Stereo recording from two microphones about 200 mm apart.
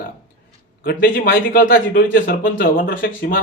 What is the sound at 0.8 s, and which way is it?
Speech, 45° left (ahead or behind).